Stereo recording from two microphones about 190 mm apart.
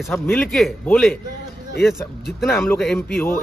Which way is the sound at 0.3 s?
5° left (ahead or behind).